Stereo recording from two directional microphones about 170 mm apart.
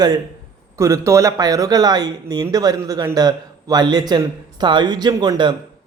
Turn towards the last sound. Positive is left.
turn(degrees=-25)  # may be behind; listen again after turning